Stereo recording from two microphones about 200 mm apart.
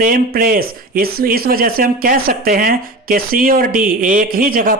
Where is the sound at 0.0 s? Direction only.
45° right (ahead or behind).